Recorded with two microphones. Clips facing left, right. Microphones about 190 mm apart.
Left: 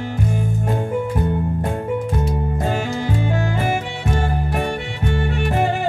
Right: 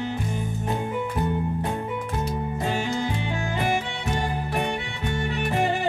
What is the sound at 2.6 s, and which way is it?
Music, 45° left (ahead or behind).